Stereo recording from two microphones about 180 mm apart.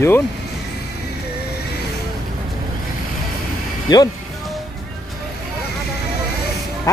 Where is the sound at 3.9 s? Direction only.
20° left (ahead or behind).